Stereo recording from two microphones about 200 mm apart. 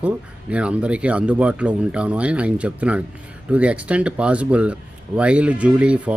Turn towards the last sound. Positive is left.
turn(degrees=-5)  # may be behind; listen again after turning